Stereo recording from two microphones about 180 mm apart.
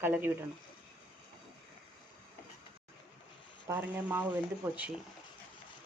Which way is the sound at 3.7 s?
10° right (ahead or behind).